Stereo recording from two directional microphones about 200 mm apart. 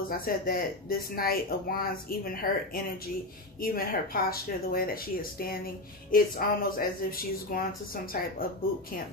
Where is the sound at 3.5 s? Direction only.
45° left (ahead or behind).